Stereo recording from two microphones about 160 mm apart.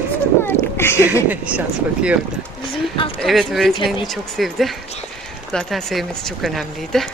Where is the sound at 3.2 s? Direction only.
Centre (ahead or behind).